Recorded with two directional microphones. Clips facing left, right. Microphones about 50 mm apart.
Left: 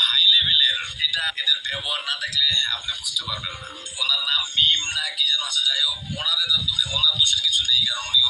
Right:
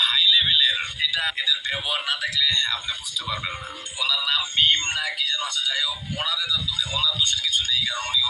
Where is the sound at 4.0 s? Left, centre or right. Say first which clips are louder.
Even; right.